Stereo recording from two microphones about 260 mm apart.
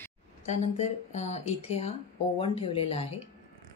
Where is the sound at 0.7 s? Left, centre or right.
Left.